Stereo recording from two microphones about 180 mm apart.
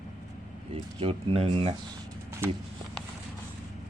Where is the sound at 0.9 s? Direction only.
35° right (ahead or behind).